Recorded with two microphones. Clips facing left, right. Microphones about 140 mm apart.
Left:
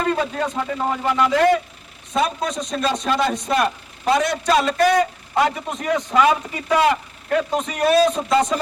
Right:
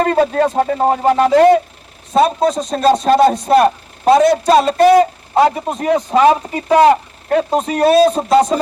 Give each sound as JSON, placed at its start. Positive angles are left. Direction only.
{"t": 0.0, "sound": "a man's voice", "side_deg": -45}